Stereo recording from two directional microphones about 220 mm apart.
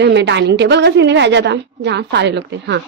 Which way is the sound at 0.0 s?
50° right (ahead or behind).